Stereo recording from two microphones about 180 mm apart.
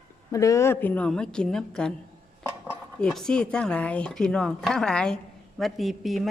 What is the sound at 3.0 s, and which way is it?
Speech, 5° left (ahead or behind).